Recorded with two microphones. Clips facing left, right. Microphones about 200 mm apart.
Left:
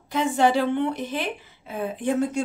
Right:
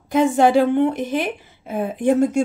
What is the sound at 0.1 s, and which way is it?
A woman's voice, 50° right (ahead or behind).